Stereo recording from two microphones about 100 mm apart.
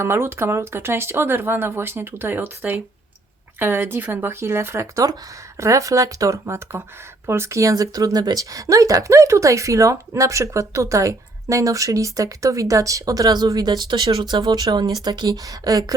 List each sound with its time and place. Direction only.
0.0 s speech: 25° right (ahead or behind)